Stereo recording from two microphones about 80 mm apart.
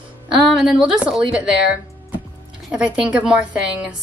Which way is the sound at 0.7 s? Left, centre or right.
Centre.